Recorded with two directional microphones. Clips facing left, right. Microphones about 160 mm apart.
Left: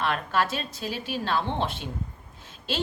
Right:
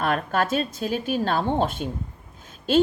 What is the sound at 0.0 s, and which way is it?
Speech, 45° right (ahead or behind).